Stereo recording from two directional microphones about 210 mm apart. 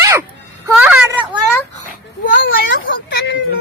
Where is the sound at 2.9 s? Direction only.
60° left (ahead or behind).